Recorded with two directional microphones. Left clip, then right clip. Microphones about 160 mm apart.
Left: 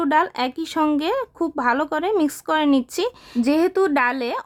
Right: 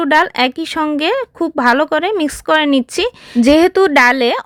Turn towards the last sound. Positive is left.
turn(degrees=-25)  # may be behind; listen again after turning